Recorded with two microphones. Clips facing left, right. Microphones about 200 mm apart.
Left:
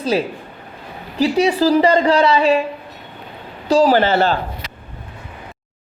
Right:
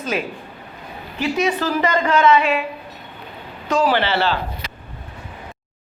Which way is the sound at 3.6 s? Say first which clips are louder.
Left 5 dB; 35° left (ahead or behind).